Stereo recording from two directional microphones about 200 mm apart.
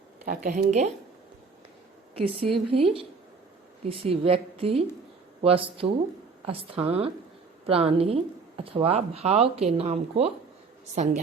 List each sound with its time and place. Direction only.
0.3 s a woman's voice: 45° right (ahead or behind)
2.1 s a woman's voice: 25° right (ahead or behind)